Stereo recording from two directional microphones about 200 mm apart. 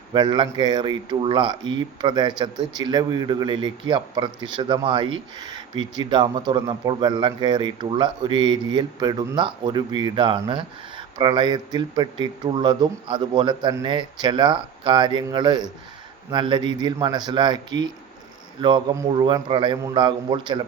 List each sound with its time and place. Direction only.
0.1 s a man's voice: 25° right (ahead or behind)